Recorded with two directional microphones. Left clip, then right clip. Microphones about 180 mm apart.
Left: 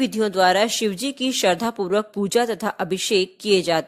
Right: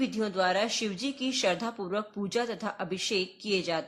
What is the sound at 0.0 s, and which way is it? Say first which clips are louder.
Speech: left 10 dB; 45° left (ahead or behind).